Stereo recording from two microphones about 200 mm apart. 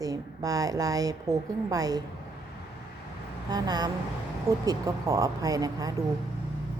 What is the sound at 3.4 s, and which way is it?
A woman's voice, 20° right (ahead or behind).